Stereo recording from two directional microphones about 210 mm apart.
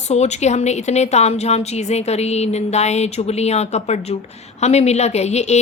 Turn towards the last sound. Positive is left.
turn(degrees=30)  # may be behind; listen again after turning